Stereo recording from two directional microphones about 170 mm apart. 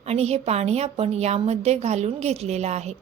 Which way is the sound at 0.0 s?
40° right (ahead or behind).